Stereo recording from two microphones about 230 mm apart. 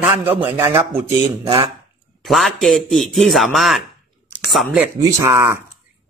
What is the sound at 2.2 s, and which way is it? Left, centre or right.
A man's voice, centre.